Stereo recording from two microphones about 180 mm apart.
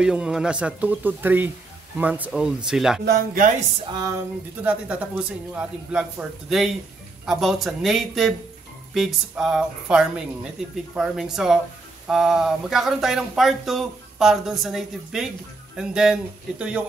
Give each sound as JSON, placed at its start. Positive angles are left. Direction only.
{"t": 0.0, "sound": "a man's voice", "side_deg": -5}
{"t": 3.1, "sound": "speech", "side_deg": -50}
{"t": 3.9, "sound": "speech", "side_deg": -20}
{"t": 4.6, "sound": "a man's voice", "side_deg": -5}